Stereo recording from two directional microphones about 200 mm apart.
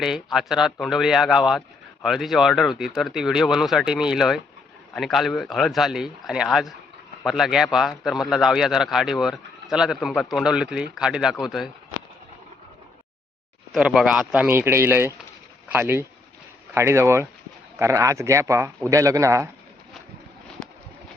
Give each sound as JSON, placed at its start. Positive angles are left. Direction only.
{"t": 0.0, "sound": "a man's voice", "side_deg": 0}
{"t": 13.7, "sound": "speech", "side_deg": -5}